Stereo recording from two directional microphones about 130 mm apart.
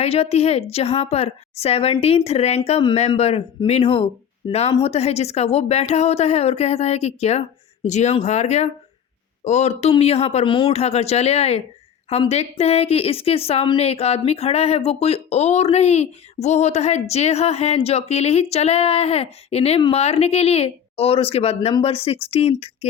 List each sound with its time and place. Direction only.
0.0 s a woman's voice: 50° left (ahead or behind)